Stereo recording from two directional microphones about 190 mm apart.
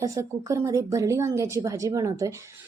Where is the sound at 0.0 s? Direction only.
15° right (ahead or behind).